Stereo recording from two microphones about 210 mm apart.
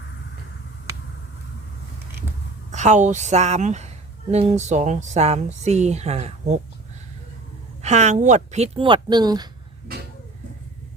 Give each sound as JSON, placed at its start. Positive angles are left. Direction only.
{"t": 2.7, "sound": "speech", "side_deg": -35}
{"t": 7.8, "sound": "speech", "side_deg": -35}